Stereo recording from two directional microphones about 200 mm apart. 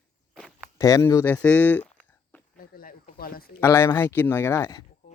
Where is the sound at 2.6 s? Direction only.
45° left (ahead or behind).